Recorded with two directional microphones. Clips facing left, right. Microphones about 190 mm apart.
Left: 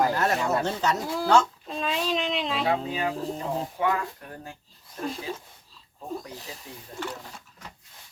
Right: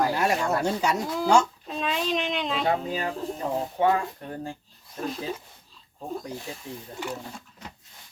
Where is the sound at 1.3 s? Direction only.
10° right (ahead or behind).